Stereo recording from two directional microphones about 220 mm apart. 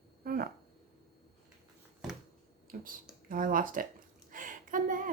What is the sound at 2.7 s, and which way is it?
A woman's voice, 40° right (ahead or behind).